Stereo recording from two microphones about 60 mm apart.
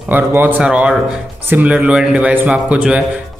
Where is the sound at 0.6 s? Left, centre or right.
Centre.